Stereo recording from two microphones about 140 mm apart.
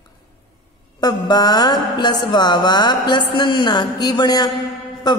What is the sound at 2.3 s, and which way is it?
A woman's voice, 30° left (ahead or behind).